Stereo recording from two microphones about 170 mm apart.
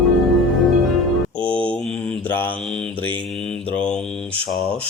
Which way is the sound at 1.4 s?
5° left (ahead or behind).